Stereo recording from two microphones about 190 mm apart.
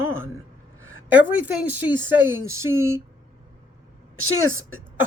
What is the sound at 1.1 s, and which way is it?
A woman's voice, 10° right (ahead or behind).